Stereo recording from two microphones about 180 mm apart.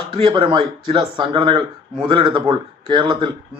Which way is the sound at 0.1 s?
25° right (ahead or behind).